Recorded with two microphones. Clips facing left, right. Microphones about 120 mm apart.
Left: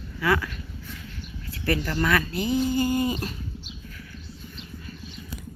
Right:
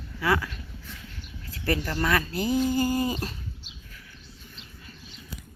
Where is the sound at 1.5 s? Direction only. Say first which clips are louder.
Left 1 dB; 30° right (ahead or behind).